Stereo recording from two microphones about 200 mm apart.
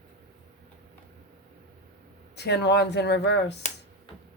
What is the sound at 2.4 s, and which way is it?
Speech, 60° left (ahead or behind).